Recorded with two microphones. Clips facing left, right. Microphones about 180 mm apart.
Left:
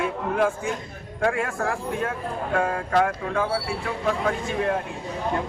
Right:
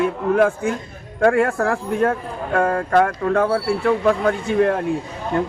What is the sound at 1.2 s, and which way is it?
A man's voice, 55° right (ahead or behind).